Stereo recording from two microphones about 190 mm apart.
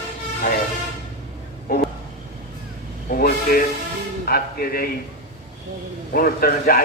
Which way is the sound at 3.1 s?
50° left (ahead or behind).